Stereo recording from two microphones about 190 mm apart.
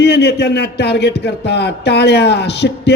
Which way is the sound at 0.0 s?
60° left (ahead or behind).